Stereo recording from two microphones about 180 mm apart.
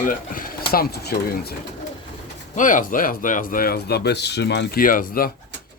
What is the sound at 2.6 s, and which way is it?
Speech, 45° left (ahead or behind).